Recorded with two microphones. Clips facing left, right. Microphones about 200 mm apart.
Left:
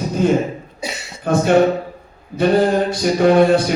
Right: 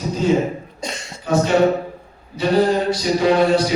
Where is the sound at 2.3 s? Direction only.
55° left (ahead or behind).